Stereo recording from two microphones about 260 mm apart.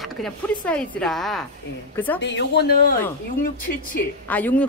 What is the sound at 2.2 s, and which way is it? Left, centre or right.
Speech, left.